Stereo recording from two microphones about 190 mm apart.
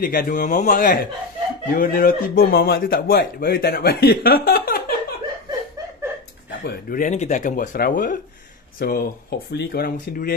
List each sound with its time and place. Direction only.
0.0 s speech: 50° left (ahead or behind)
6.6 s speech: 45° left (ahead or behind)